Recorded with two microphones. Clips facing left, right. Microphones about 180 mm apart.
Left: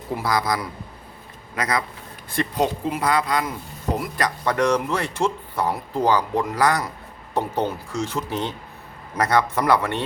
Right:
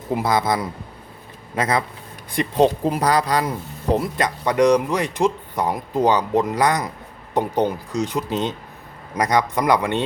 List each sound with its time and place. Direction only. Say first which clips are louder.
0.1 s a man's voice: right 3 dB; 20° right (ahead or behind)
3.9 s speech: right 4 dB; 25° right (ahead or behind)